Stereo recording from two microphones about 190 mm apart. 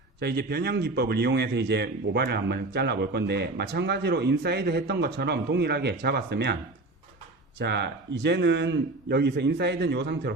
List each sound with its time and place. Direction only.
0.2 s speech: 60° right (ahead or behind)
7.6 s speech: 65° right (ahead or behind)